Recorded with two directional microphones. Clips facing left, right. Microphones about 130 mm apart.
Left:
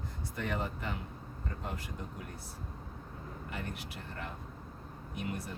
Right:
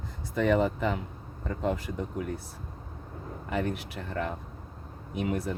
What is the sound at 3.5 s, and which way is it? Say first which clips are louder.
Speech: right 13 dB; 90° right.